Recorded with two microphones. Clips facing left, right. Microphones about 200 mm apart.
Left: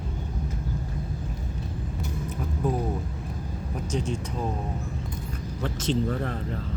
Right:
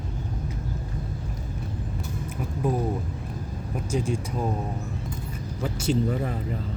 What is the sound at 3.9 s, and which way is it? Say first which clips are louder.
Speech: right 3 dB; 10° right (ahead or behind).